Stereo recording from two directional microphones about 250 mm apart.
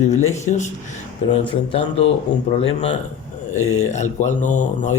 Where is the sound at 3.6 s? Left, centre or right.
Left.